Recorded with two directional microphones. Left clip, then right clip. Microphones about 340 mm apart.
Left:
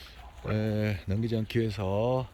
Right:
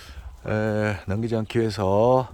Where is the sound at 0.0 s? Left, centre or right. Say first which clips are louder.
Right 4 dB; centre.